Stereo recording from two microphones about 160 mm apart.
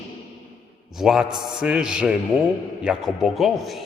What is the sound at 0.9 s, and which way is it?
A man's voice, centre (ahead or behind).